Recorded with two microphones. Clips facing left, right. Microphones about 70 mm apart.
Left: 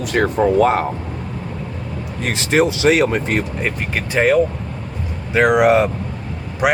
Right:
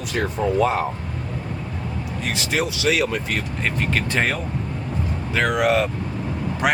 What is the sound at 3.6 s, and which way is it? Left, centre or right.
Speech, centre.